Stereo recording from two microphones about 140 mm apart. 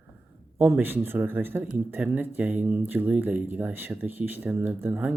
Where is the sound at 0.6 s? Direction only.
15° right (ahead or behind).